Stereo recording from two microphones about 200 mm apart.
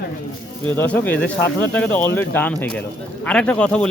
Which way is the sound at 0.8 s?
10° left (ahead or behind).